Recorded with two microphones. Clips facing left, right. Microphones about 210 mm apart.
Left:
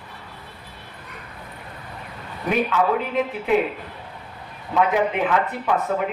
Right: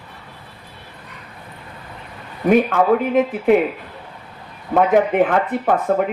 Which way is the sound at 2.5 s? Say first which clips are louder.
Right 6 dB; 50° right (ahead or behind).